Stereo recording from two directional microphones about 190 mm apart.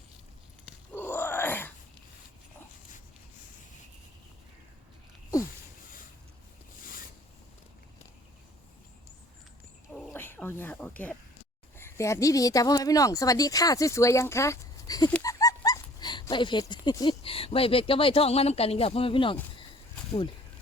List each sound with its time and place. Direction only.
0.9 s groan: 10° left (ahead or behind)
9.9 s a sound: 10° left (ahead or behind)
11.8 s speech: 15° left (ahead or behind)
15.2 s dog: 20° left (ahead or behind)